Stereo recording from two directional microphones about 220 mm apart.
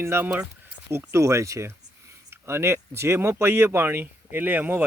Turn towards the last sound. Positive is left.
turn(degrees=-10)  # may be behind; listen again after turning